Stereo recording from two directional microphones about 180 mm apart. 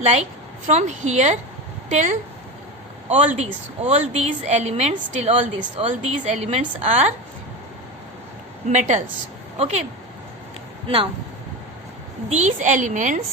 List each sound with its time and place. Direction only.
0.0 s a woman's voice: 35° right (ahead or behind)
8.6 s a woman's voice: 40° right (ahead or behind)
10.8 s speech: 30° right (ahead or behind)
12.3 s a woman's voice: 40° right (ahead or behind)